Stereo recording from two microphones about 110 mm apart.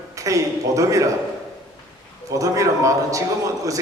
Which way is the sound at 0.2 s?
30° right (ahead or behind).